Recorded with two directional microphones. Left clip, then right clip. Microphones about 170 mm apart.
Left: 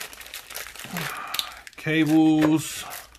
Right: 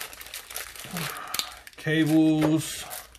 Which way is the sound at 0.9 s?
25° left (ahead or behind).